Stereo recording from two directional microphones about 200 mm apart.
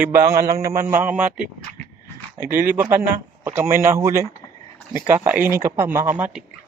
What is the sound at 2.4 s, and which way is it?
Speech, 45° right (ahead or behind).